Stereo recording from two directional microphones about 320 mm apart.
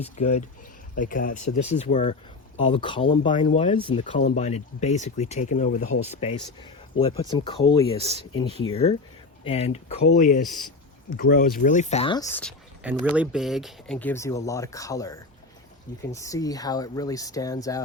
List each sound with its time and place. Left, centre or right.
0.0 s speech: centre
7.9 s speech: centre
8.4 s speech: centre
10.4 s speech: centre
11.2 s speech: left; by 17.8 s centre